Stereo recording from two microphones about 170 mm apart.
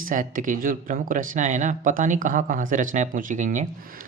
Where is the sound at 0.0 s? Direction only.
50° right (ahead or behind).